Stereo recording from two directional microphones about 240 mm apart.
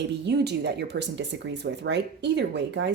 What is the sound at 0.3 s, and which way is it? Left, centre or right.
Speech, right.